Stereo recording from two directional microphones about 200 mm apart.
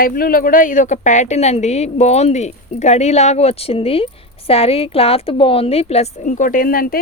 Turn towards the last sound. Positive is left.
turn(degrees=45)  # may be behind; listen again after turning